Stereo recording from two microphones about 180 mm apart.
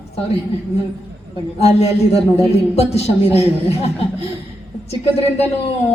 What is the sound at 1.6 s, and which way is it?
Speech, 35° left (ahead or behind).